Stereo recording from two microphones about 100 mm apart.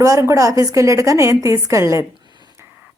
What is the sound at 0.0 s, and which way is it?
A woman's voice, 35° right (ahead or behind).